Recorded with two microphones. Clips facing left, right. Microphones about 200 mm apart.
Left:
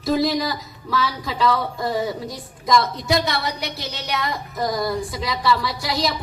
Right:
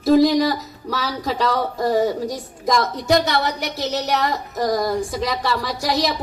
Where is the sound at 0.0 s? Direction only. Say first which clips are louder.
Right 6 dB; 45° right (ahead or behind).